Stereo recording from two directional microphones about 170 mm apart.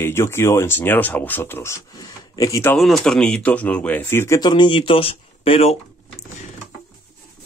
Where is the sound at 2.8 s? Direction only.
Centre (ahead or behind); by 5.8 s 35° left (ahead or behind).